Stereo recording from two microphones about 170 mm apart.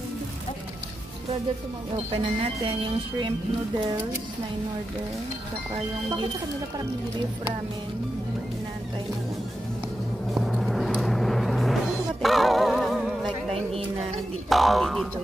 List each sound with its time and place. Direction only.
2.0 s speech: 35° right (ahead or behind)
10.3 s vehicle: centre (ahead or behind)
12.2 s music: centre (ahead or behind)
14.5 s speech: centre (ahead or behind)